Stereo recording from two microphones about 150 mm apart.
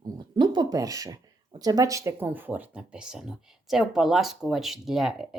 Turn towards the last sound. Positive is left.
turn(degrees=-5)  # may be behind; listen again after turning